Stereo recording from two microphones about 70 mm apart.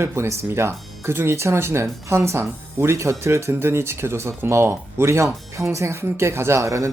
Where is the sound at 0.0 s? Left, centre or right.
Right.